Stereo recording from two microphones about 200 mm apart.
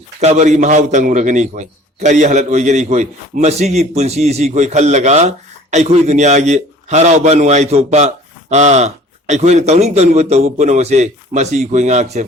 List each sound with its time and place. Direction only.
0.2 s a man's voice: 35° right (ahead or behind)